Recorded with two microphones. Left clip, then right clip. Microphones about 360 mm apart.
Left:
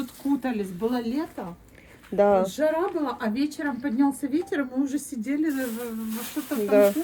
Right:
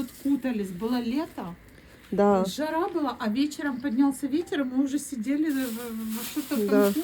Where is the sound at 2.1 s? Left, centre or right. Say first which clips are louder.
Left 3 dB; centre.